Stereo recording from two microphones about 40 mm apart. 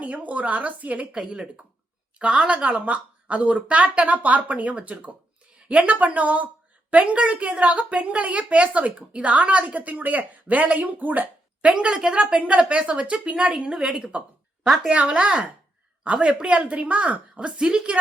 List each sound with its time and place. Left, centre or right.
0.0 s a woman's voice: right
2.1 s speech: right
2.6 s a woman's voice: right
11.7 s speech: right
13.7 s a woman's voice: centre
14.0 s a woman's voice: right
17.6 s speech: right